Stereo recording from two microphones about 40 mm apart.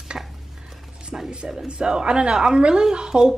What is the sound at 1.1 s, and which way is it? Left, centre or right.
Music, right.